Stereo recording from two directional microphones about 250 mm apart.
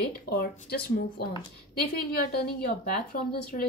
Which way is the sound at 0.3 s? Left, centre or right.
Left.